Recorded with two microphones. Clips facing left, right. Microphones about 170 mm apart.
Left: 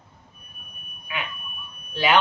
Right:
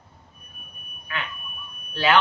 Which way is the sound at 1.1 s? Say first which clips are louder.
Even; 15° left (ahead or behind).